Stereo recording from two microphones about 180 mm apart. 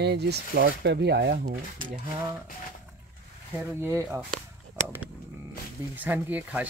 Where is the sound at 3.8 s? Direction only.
15° right (ahead or behind).